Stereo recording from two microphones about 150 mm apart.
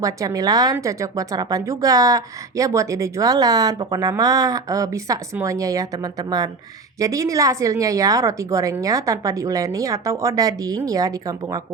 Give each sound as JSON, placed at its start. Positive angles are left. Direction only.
{"t": 0.0, "sound": "speech", "side_deg": -25}